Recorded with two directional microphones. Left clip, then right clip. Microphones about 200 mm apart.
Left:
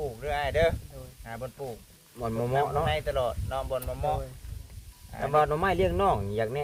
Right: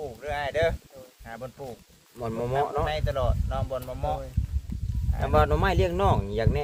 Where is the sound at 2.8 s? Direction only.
Centre (ahead or behind).